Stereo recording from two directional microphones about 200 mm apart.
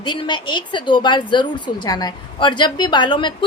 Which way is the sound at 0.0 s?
25° left (ahead or behind).